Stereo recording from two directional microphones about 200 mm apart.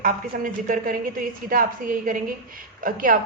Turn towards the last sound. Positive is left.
turn(degrees=-45)  # may be behind; listen again after turning